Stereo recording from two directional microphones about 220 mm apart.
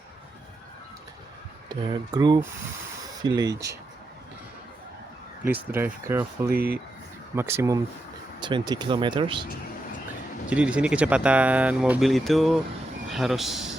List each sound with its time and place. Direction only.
1.7 s speech: 20° right (ahead or behind)
5.5 s speech: 10° right (ahead or behind)
6.5 s speech: 45° right (ahead or behind)
7.3 s speech: 10° right (ahead or behind)
10.5 s a man's voice: 5° right (ahead or behind)